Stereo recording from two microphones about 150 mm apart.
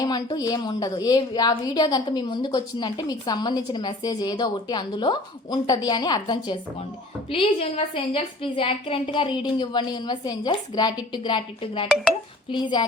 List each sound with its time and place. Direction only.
0.0 s a woman's voice: 25° left (ahead or behind)
7.3 s a woman's voice: 40° left (ahead or behind)